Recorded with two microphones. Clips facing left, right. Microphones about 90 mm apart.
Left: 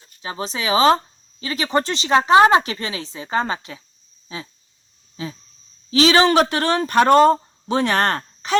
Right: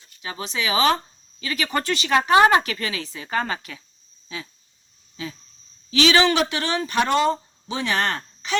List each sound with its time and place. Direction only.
0.0 s speech: 30° left (ahead or behind)
4.3 s a sound: 30° left (ahead or behind)
5.1 s speech: 30° left (ahead or behind)